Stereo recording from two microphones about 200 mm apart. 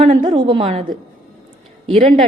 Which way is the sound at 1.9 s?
25° right (ahead or behind).